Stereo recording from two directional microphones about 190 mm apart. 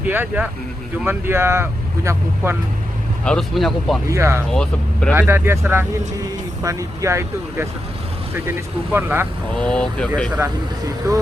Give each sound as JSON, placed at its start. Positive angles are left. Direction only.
{"t": 0.0, "sound": "speech", "side_deg": -10}
{"t": 3.2, "sound": "speech", "side_deg": 0}
{"t": 4.1, "sound": "speech", "side_deg": -15}
{"t": 4.5, "sound": "speech", "side_deg": 5}
{"t": 5.1, "sound": "speech", "side_deg": -10}
{"t": 9.6, "sound": "speech", "side_deg": 5}
{"t": 11.1, "sound": "speech", "side_deg": -20}